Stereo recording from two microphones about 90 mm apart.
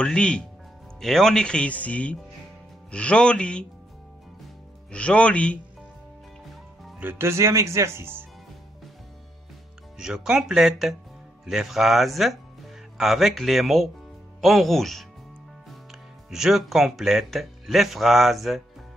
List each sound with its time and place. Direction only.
0.0 s speech: 10° left (ahead or behind)
4.9 s speech: 15° left (ahead or behind)
7.0 s speech: 25° right (ahead or behind)
9.9 s speech: 10° right (ahead or behind)